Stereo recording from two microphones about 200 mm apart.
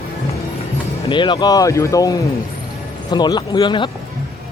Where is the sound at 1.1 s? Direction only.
25° left (ahead or behind).